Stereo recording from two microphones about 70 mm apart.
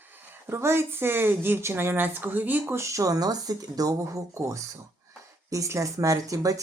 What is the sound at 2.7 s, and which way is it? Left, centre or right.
Speech, right.